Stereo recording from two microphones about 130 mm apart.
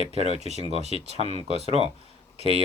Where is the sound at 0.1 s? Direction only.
55° right (ahead or behind).